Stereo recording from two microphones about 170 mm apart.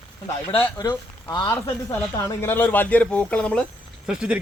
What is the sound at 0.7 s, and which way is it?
Speech, 20° left (ahead or behind).